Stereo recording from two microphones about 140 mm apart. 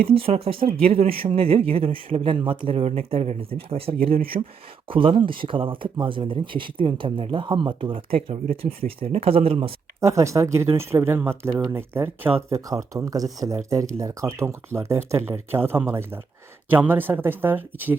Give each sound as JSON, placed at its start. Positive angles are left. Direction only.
{"t": 0.1, "sound": "speech", "side_deg": -45}
{"t": 4.1, "sound": "speech", "side_deg": -90}
{"t": 4.9, "sound": "speech", "side_deg": -40}
{"t": 10.0, "sound": "speech", "side_deg": -20}